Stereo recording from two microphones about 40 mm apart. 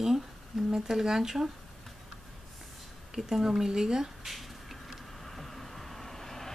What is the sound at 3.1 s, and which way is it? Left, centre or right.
Speech, centre.